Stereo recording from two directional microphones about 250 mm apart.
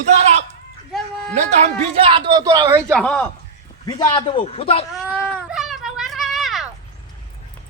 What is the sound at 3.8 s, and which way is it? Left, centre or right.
A man's voice, centre.